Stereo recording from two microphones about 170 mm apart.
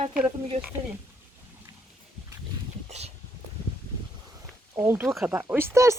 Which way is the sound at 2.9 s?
40° right (ahead or behind).